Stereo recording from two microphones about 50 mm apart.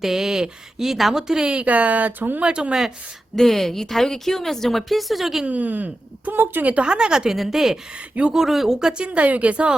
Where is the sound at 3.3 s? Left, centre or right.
Centre.